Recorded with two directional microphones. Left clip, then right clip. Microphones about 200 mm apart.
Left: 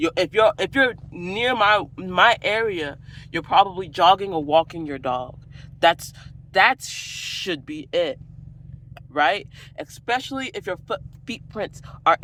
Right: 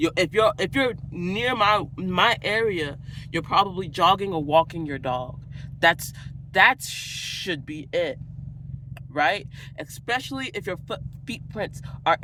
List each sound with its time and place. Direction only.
0.0 s speech: 20° right (ahead or behind)